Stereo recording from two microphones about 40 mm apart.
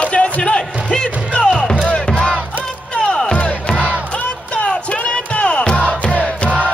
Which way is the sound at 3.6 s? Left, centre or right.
Left.